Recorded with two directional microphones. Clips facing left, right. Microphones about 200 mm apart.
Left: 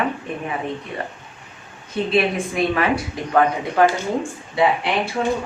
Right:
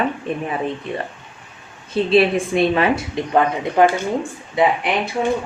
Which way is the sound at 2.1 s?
25° right (ahead or behind).